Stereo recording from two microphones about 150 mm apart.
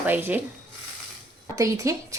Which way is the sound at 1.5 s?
20° right (ahead or behind).